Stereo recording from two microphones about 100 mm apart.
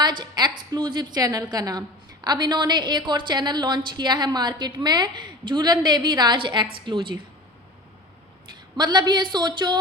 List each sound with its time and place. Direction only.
0.0 s a woman's voice: 50° right (ahead or behind)
8.8 s a woman's voice: 45° right (ahead or behind)